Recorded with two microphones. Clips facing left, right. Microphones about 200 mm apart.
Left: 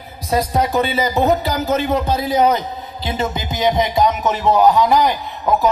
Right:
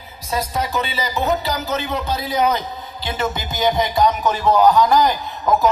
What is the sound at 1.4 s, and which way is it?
Speech, 50° left (ahead or behind).